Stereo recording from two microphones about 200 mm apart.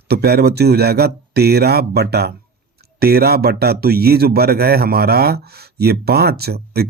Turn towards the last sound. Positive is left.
turn(degrees=-50)  # may be behind; listen again after turning